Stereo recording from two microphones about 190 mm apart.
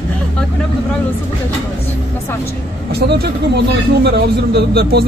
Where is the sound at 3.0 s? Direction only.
60° right (ahead or behind).